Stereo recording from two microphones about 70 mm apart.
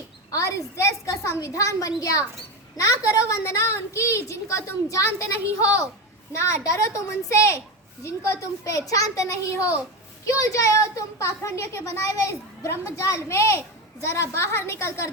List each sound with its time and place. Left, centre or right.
0.3 s a child's voice: left